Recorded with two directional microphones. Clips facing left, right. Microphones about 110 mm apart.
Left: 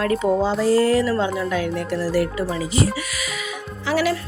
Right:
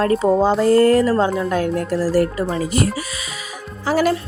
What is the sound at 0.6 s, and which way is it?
Speech, 50° right (ahead or behind).